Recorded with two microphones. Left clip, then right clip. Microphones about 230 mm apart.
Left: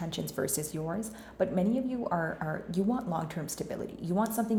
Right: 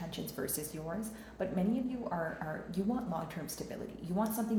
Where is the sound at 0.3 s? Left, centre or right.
Left.